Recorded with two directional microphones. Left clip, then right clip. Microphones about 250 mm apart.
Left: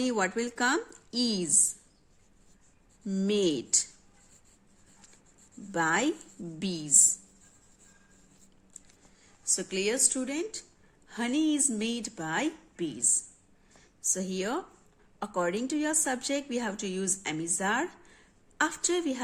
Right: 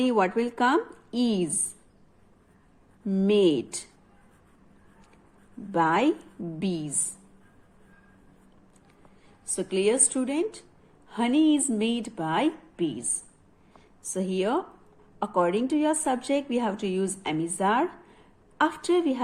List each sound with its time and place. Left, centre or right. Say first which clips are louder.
0.0 s a woman's voice: right 5 dB; centre
3.1 s a woman's voice: right 6 dB; centre
5.7 s a woman's voice: right 5 dB; centre
9.5 s a woman's voice: right 5 dB; centre
13.7 s a sound: even; centre
15.2 s a woman's voice: right 6 dB; centre